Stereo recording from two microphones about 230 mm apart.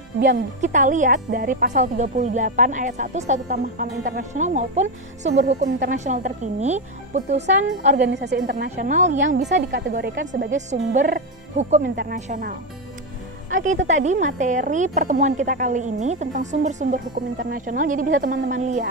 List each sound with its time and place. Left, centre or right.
0.6 s speech: right
7.9 s a woman's voice: right